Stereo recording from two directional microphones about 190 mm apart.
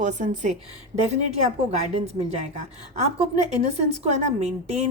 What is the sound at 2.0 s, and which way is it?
A woman's voice, 35° right (ahead or behind).